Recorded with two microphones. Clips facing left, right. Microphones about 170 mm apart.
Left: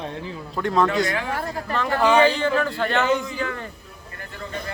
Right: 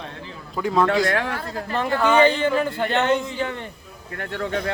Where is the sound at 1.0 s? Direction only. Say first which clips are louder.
Right 3 dB; 70° right (ahead or behind).